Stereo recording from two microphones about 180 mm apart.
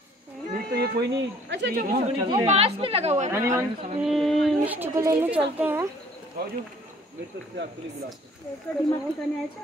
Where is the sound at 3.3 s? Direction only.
15° right (ahead or behind).